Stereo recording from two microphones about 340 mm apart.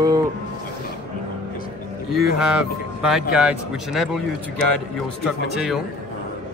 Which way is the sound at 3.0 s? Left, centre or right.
Centre.